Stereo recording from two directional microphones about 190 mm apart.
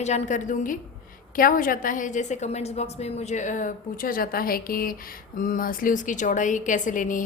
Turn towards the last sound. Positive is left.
turn(degrees=45)  # may be behind; listen again after turning